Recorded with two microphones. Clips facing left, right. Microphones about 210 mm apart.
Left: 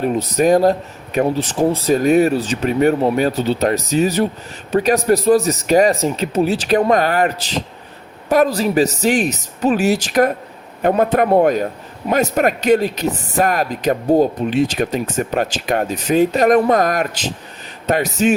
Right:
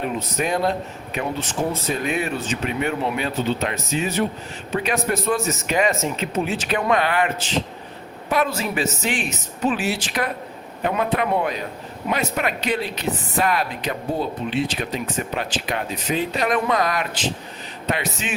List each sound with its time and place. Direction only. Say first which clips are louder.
0.0 s speech: left 9 dB; 40° left (ahead or behind)